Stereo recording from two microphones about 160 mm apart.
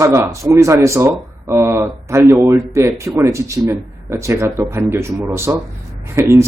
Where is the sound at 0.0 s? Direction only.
20° right (ahead or behind).